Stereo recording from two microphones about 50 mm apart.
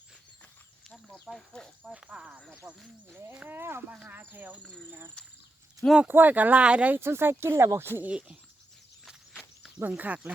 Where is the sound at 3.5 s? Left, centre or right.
Right.